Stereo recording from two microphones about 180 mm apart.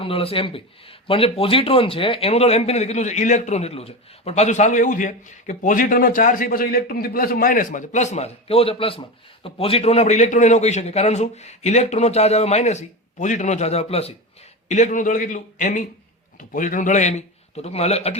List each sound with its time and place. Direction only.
0.0 s a man's voice: 30° left (ahead or behind)